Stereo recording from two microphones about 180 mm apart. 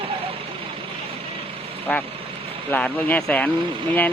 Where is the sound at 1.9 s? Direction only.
5° left (ahead or behind).